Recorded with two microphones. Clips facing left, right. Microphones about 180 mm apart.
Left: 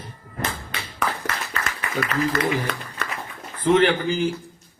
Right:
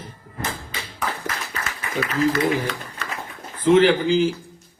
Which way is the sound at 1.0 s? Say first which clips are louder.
Left 2 dB; 70° left (ahead or behind).